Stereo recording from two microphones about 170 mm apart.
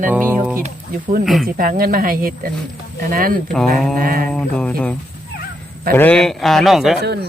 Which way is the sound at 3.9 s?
55° right (ahead or behind).